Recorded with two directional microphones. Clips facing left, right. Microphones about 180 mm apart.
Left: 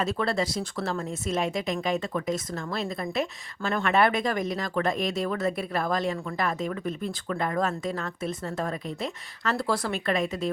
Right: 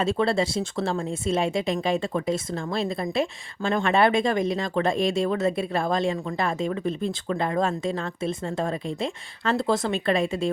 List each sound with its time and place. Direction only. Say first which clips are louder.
0.0 s speech: right 4 dB; 25° right (ahead or behind)